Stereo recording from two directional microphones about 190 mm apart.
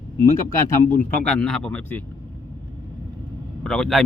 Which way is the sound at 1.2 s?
5° left (ahead or behind).